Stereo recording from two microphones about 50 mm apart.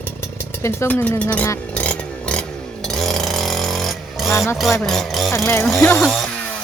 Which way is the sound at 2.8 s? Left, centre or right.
Centre.